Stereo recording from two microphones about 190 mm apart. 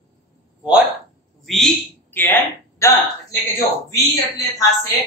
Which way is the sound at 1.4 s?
Centre (ahead or behind).